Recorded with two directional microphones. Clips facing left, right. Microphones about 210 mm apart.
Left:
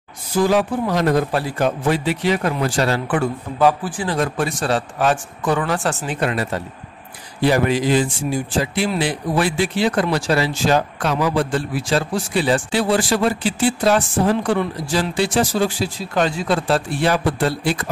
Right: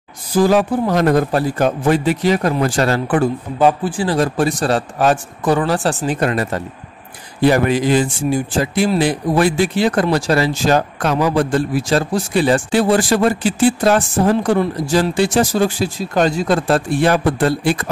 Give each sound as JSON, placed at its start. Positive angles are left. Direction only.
{"t": 0.4, "sound": "speech", "side_deg": -45}
{"t": 3.5, "sound": "a man's voice", "side_deg": -25}